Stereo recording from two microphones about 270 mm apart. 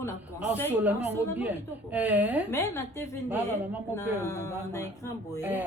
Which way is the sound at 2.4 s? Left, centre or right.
Centre.